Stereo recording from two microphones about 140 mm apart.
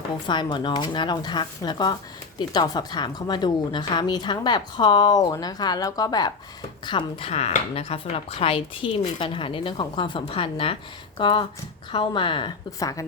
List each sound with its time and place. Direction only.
0.3 s a woman's voice: 35° left (ahead or behind)
12.8 s a woman's voice: 25° left (ahead or behind)